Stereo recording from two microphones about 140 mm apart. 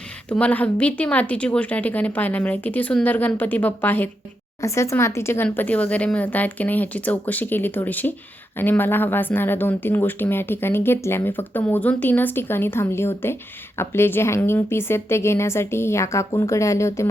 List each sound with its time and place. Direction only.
0.3 s a woman's voice: 10° left (ahead or behind)